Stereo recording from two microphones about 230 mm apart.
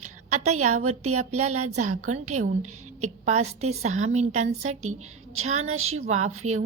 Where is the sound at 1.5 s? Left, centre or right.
Right.